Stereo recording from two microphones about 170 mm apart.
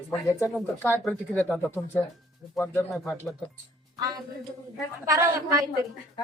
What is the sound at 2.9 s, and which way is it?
Speech, centre (ahead or behind).